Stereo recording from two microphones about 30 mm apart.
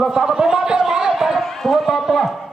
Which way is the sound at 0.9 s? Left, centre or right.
Centre.